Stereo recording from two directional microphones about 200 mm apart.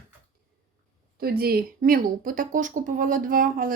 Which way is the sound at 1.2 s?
50° right (ahead or behind).